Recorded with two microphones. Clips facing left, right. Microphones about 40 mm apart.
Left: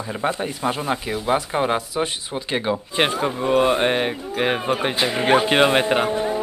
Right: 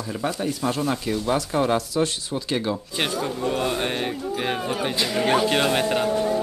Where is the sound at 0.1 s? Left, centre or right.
Left.